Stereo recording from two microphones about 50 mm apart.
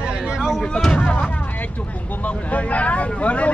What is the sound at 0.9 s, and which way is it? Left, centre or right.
Speech, left.